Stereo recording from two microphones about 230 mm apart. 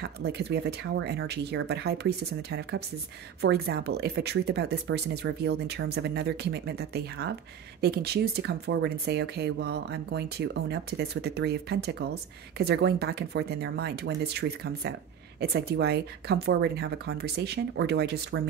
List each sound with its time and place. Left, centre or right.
0.0 s speech: right